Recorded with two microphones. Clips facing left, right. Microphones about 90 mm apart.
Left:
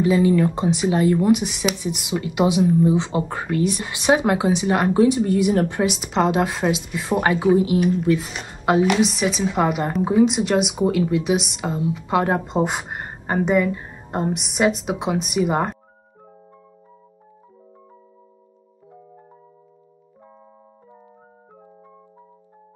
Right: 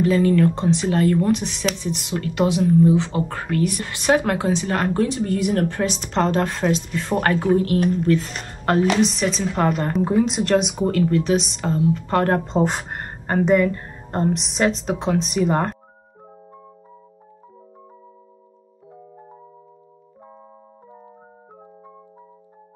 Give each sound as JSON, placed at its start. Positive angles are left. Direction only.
{"t": 0.0, "sound": "speech", "side_deg": 10}